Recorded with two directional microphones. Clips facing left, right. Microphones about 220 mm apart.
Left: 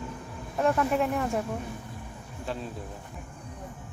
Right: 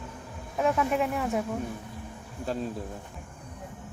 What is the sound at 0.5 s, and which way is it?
Speech, 5° right (ahead or behind).